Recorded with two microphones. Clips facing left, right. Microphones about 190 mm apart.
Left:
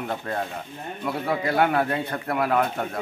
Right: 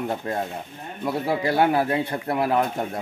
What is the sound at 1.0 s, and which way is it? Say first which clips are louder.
A man's voice: right 2 dB; 30° right (ahead or behind).